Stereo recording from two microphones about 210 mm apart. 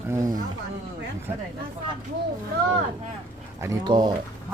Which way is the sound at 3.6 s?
15° right (ahead or behind).